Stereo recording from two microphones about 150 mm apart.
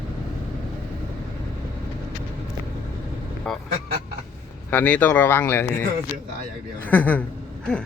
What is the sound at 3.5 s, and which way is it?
Honk, 5° left (ahead or behind).